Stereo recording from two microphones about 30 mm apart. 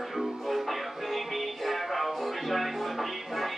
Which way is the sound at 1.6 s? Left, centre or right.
Centre.